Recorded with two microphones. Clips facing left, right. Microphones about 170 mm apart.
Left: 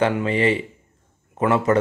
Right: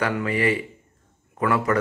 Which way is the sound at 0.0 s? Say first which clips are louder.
Left 4 dB; 25° left (ahead or behind).